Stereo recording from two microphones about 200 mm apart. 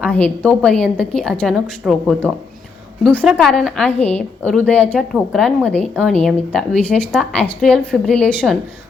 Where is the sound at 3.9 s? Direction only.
30° left (ahead or behind).